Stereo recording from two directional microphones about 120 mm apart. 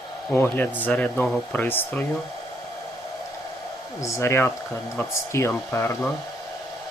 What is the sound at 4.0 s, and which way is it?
Speech, 25° left (ahead or behind).